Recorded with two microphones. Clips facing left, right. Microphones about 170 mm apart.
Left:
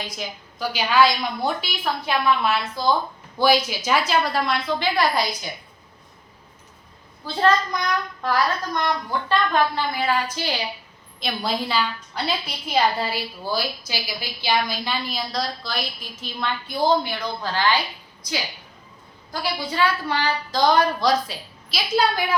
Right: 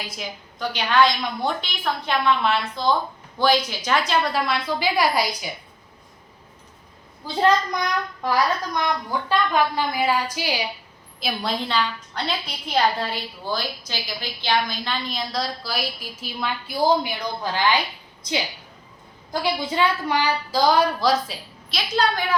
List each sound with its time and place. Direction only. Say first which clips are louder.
0.0 s a woman's voice: left 1 dB; centre (ahead or behind)
7.3 s a woman's voice: right 1 dB; 15° right (ahead or behind); by 22.2 s 5° left (ahead or behind)